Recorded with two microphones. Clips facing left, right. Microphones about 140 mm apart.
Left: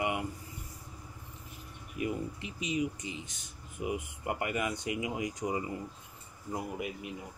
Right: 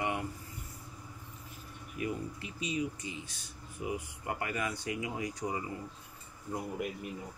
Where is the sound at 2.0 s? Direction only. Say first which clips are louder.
Left 2 dB; 20° left (ahead or behind).